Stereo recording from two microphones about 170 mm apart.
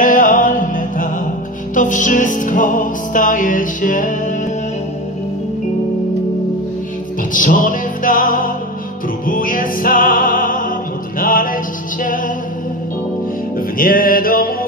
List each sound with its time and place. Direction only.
0.0 s music: 50° left (ahead or behind)
7.3 s music: 50° left (ahead or behind)
13.6 s music: 55° left (ahead or behind)